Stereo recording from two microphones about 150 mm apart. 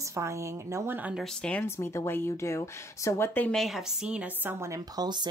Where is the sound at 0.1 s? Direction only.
20° right (ahead or behind).